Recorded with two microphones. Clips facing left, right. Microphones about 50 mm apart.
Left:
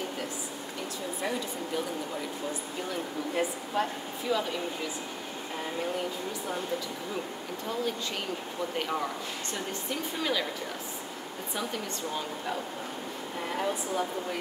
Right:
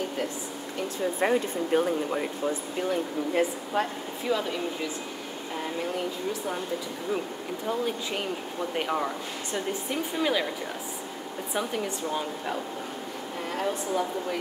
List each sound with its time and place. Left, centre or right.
1.2 s speech: right
2.9 s speech: right
8.7 s speech: centre
11.5 s speech: centre
13.5 s speech: centre